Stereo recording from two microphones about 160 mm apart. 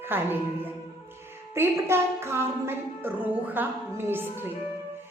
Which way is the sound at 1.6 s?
15° right (ahead or behind).